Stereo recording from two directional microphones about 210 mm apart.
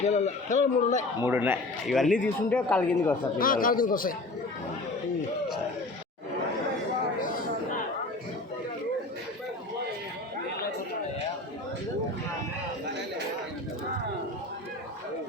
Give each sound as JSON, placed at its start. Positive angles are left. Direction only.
{"t": 0.0, "sound": "a man's voice", "side_deg": 35}
{"t": 1.2, "sound": "speech", "side_deg": -10}
{"t": 3.3, "sound": "a man's voice", "side_deg": 40}